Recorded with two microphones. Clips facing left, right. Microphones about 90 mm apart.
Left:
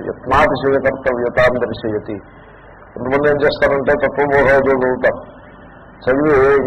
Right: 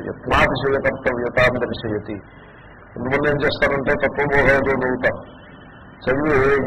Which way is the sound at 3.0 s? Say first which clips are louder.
Left 5 dB; 25° left (ahead or behind).